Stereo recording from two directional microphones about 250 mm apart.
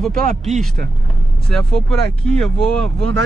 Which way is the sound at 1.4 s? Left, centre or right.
Right.